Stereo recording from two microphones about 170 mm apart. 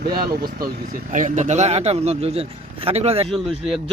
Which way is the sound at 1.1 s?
45° right (ahead or behind).